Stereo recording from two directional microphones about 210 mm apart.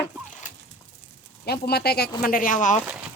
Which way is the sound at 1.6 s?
50° left (ahead or behind).